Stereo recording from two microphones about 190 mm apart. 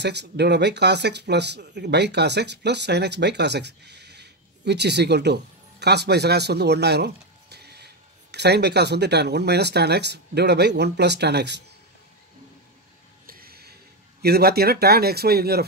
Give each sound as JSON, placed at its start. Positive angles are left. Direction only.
{"t": 0.0, "sound": "speech", "side_deg": -60}
{"t": 13.3, "sound": "a sound", "side_deg": -50}
{"t": 14.2, "sound": "speech", "side_deg": -55}